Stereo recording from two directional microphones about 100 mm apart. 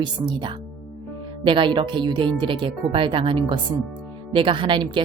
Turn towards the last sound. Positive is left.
turn(degrees=-55)  # may be behind; listen again after turning